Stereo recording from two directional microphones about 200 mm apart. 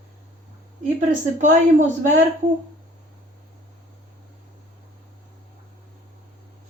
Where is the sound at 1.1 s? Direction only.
40° right (ahead or behind).